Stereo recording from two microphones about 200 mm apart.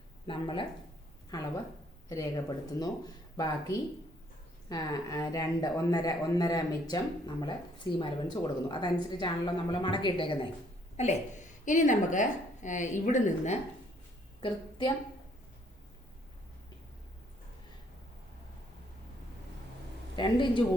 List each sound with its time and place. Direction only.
0.3 s speech: 25° left (ahead or behind)
4.7 s a woman's voice: 20° left (ahead or behind); by 13.6 s 35° left (ahead or behind)
14.4 s a woman's voice: 25° left (ahead or behind)
20.1 s speech: 25° left (ahead or behind)